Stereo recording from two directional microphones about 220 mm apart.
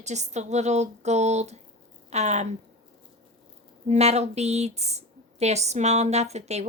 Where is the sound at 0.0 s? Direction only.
30° right (ahead or behind).